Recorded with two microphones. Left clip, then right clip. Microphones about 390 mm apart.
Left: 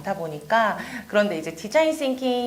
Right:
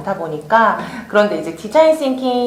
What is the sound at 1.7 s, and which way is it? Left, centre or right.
Speech, left.